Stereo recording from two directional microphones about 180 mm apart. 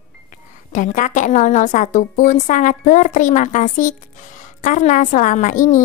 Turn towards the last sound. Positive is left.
turn(degrees=45)  # may be behind; listen again after turning